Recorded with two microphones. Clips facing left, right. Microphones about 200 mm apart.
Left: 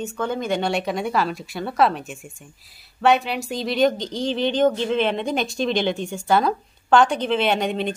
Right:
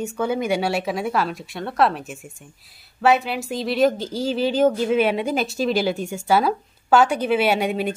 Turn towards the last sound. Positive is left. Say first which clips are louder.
# right 1 dB
turn(degrees=-5)  # may be behind; listen again after turning